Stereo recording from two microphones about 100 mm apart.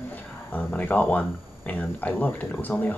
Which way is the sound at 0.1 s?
15° left (ahead or behind).